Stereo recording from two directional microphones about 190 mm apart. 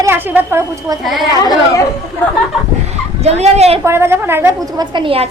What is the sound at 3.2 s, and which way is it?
Speech, 35° right (ahead or behind).